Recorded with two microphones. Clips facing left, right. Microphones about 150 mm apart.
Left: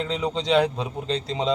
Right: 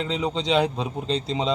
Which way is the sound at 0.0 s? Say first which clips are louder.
Even; 25° right (ahead or behind).